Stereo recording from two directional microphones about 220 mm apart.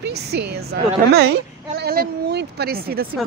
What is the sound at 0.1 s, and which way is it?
Speech, 45° right (ahead or behind).